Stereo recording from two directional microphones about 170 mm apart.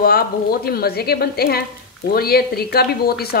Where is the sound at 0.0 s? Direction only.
65° left (ahead or behind).